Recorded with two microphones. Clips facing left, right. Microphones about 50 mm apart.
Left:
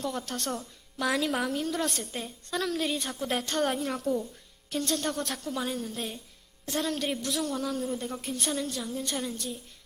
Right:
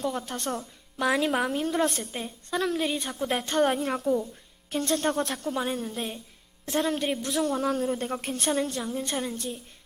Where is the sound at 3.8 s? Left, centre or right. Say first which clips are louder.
Right 3 dB; right.